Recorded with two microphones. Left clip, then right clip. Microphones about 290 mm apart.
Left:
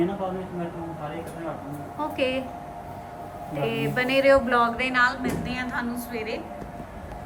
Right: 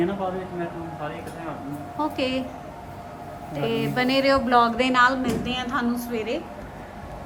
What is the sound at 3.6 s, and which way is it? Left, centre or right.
Speech, centre.